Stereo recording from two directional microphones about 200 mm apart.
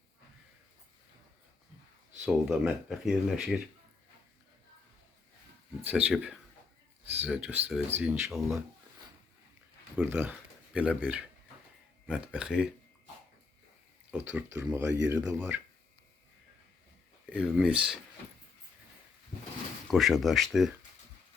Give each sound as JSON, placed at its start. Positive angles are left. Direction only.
{"t": 2.2, "sound": "speech", "side_deg": -5}
{"t": 5.8, "sound": "speech", "side_deg": -5}
{"t": 9.9, "sound": "speech", "side_deg": -10}
{"t": 14.1, "sound": "speech", "side_deg": -10}
{"t": 17.2, "sound": "speech", "side_deg": -5}
{"t": 19.9, "sound": "speech", "side_deg": 0}